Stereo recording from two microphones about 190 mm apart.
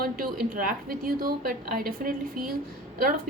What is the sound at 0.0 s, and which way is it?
A woman's voice, 50° right (ahead or behind).